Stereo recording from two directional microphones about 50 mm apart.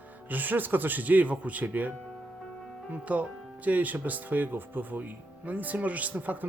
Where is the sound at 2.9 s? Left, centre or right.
Right.